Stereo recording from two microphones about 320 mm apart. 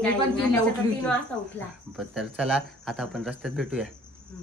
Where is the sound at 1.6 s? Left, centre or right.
Centre.